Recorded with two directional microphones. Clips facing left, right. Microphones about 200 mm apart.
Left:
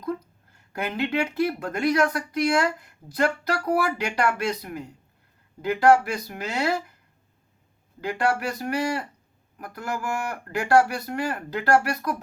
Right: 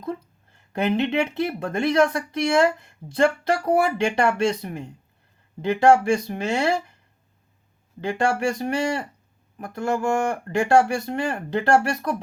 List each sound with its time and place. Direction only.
0.0 s speech: 25° right (ahead or behind)
8.0 s speech: 25° right (ahead or behind)